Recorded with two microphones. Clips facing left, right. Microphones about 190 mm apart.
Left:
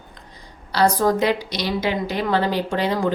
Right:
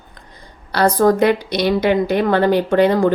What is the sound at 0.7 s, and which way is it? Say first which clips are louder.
A woman's voice: right 4 dB; 60° right (ahead or behind).